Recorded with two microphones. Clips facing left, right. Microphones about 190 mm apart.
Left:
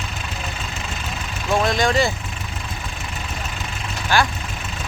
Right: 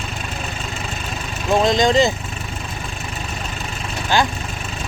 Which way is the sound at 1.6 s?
20° right (ahead or behind).